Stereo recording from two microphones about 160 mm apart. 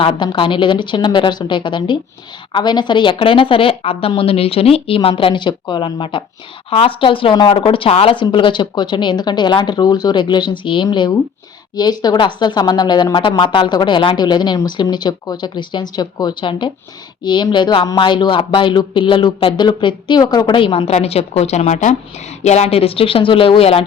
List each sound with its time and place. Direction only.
0.0 s speech: 30° left (ahead or behind)